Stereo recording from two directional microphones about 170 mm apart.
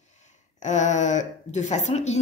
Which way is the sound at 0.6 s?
45° left (ahead or behind).